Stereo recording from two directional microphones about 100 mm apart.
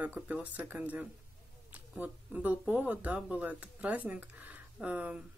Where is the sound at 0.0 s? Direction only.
15° right (ahead or behind).